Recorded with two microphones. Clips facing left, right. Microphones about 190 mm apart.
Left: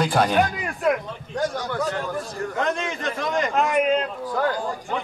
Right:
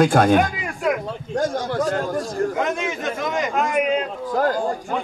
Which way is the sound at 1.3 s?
50° right (ahead or behind).